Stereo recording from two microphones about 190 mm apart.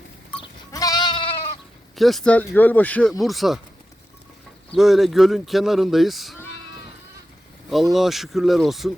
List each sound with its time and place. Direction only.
0.7 s goat: 20° left (ahead or behind)
2.0 s speech: centre (ahead or behind)
4.7 s speech: centre (ahead or behind)
7.7 s speech: centre (ahead or behind)